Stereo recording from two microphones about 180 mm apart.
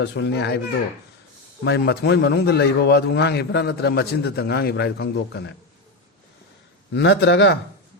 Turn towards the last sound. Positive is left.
turn(degrees=80)